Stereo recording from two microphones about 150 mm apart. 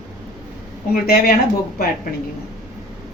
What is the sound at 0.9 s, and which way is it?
Speech, 75° left (ahead or behind).